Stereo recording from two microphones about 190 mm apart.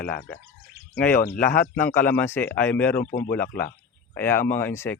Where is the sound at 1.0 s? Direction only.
55° left (ahead or behind).